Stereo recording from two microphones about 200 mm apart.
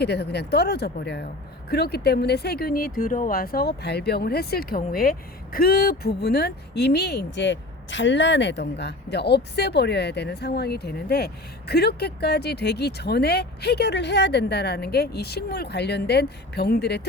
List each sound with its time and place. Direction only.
0.0 s speech: 55° left (ahead or behind)